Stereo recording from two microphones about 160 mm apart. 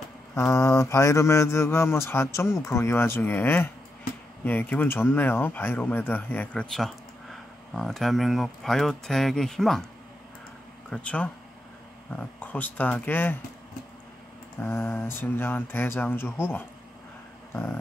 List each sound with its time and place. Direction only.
0.3 s speech: 20° left (ahead or behind); by 9.8 s centre (ahead or behind)
10.9 s speech: 10° left (ahead or behind)
14.6 s speech: 15° left (ahead or behind)